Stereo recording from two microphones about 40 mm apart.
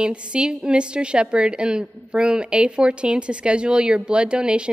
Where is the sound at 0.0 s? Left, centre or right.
Right.